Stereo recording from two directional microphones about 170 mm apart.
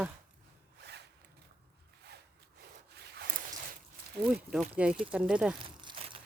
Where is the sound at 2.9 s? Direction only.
70° right (ahead or behind).